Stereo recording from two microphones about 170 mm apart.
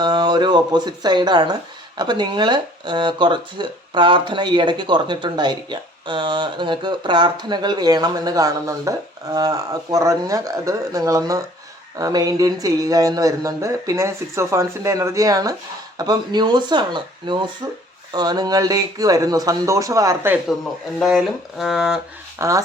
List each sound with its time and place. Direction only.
0.0 s speech: 25° right (ahead or behind)
21.0 s speech: centre (ahead or behind)
22.4 s speech: 20° right (ahead or behind)